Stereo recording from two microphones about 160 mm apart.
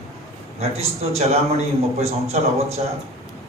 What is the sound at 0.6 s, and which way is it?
A man's voice, 40° right (ahead or behind).